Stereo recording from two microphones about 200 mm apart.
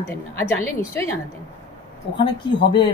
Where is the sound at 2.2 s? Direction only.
20° left (ahead or behind).